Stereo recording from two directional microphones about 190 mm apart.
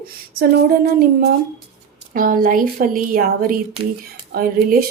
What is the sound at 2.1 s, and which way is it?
A woman's voice, 45° right (ahead or behind).